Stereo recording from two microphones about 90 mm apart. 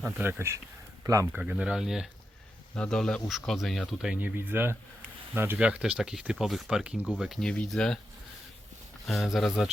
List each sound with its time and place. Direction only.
0.2 s speech: 25° right (ahead or behind)
1.3 s speech: 15° right (ahead or behind)
2.7 s speech: 10° left (ahead or behind); by 4.2 s 5° right (ahead or behind)
4.2 s speech: 20° right (ahead or behind)
5.5 s speech: 10° right (ahead or behind)
7.3 s speech: 10° left (ahead or behind)
9.0 s speech: centre (ahead or behind)